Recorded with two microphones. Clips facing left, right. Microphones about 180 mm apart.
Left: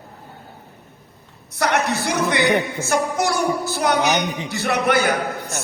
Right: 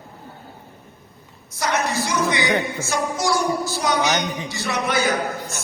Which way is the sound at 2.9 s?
60° left (ahead or behind).